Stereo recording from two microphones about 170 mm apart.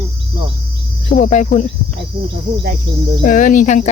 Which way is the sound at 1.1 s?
50° left (ahead or behind).